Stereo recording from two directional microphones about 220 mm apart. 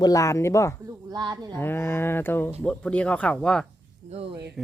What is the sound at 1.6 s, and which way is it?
Speech, 10° left (ahead or behind).